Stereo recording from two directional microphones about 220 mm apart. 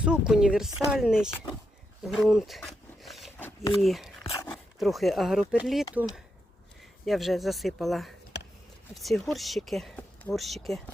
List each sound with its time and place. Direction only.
0.0 s speech: 5° right (ahead or behind)
4.2 s dog: 20° left (ahead or behind)
4.5 s speech: centre (ahead or behind)